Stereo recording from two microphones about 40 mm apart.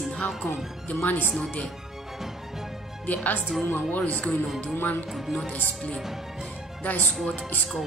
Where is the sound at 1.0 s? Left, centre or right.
Left.